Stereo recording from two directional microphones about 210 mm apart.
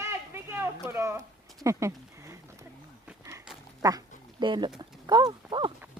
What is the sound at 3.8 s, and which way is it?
Speech, 15° right (ahead or behind).